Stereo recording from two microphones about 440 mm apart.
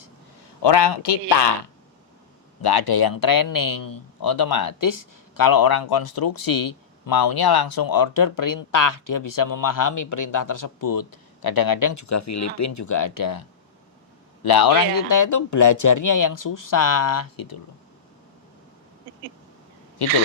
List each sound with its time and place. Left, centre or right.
0.6 s speech: left
2.6 s speech: left
14.4 s speech: left
20.0 s speech: left